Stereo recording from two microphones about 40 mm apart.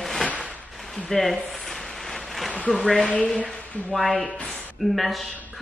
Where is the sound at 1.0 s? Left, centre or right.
Centre.